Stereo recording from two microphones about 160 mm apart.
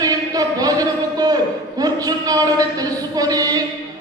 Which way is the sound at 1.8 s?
25° right (ahead or behind).